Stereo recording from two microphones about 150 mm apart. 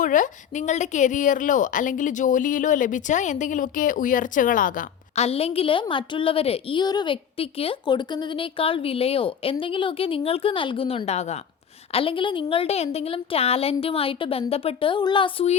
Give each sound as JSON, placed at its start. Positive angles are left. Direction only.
{"t": 0.0, "sound": "a woman's voice", "side_deg": 60}
{"t": 5.1, "sound": "a woman's voice", "side_deg": 45}